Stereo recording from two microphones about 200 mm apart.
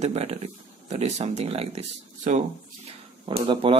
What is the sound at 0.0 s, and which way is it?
Speech, 30° right (ahead or behind).